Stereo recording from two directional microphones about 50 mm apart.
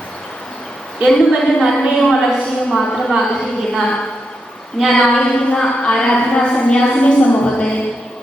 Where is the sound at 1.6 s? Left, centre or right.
Centre.